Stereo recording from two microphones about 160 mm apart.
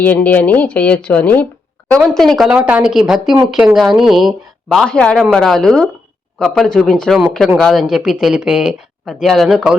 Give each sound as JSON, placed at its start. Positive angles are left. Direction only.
{"t": 0.0, "sound": "speech", "side_deg": 10}